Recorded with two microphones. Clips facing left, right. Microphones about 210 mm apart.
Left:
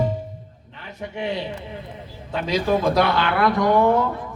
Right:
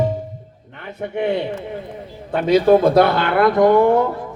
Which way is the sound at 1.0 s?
55° right (ahead or behind).